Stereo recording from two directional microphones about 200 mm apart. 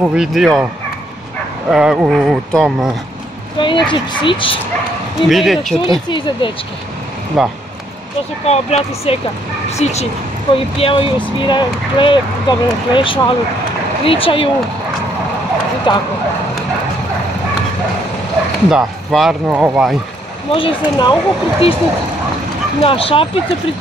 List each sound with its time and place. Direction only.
0.0 s speech: 5° right (ahead or behind)
1.7 s speech: 5° right (ahead or behind)
3.5 s dog: 25° left (ahead or behind)
3.9 s speech: 25° left (ahead or behind)
5.3 s speech: centre (ahead or behind)
5.8 s speech: 25° left (ahead or behind)
7.4 s speech: centre (ahead or behind)
8.5 s speech: 30° left (ahead or behind)
15.9 s speech: 25° left (ahead or behind)
18.7 s speech: centre (ahead or behind)
20.5 s speech: 25° left (ahead or behind)
22.8 s speech: 30° left (ahead or behind)